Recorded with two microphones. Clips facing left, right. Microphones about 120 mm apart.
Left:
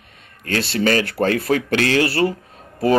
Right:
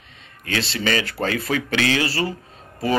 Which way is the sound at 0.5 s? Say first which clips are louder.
Left 5 dB; 50° left (ahead or behind).